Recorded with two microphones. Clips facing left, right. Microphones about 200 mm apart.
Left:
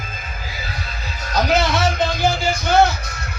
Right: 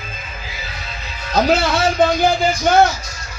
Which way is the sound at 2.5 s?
60° left (ahead or behind).